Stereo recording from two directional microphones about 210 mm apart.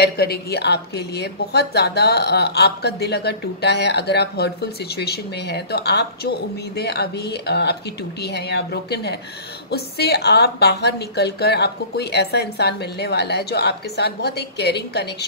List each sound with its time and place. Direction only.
0.0 s a woman's voice: 50° left (ahead or behind)